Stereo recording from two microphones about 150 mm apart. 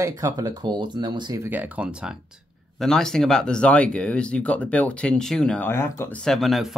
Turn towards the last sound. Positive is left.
turn(degrees=0)  # may be behind; listen again after turning